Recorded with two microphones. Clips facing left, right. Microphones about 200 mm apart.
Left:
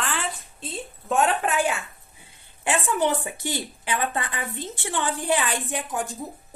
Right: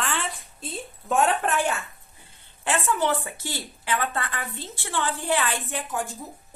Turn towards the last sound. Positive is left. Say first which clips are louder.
# left 1 dB
turn(degrees=15)  # may be behind; listen again after turning